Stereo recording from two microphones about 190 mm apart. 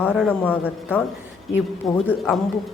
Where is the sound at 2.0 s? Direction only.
Centre (ahead or behind).